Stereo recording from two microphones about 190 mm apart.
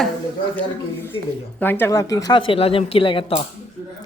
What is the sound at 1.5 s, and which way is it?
Speech, 10° left (ahead or behind).